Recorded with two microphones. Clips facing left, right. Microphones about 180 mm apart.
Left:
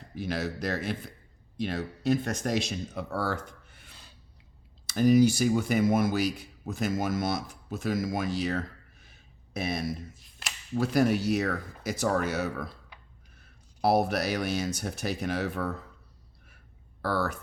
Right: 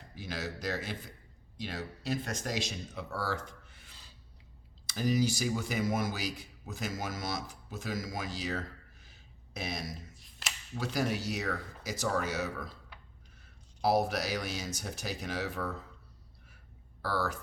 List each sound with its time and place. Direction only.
0.2 s speech: 60° left (ahead or behind)
10.2 s speech: centre (ahead or behind)
10.8 s speech: 60° left (ahead or behind)
13.8 s speech: 60° left (ahead or behind)
17.0 s speech: 60° left (ahead or behind)